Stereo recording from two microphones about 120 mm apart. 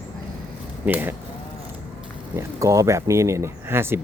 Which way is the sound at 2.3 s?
25° right (ahead or behind).